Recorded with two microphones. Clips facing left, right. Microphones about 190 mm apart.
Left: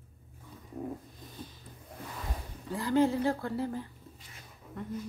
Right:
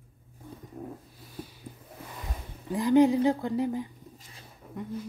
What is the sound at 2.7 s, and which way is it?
Speech, 15° right (ahead or behind).